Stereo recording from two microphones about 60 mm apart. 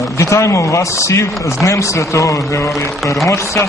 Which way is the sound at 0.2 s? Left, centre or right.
Left.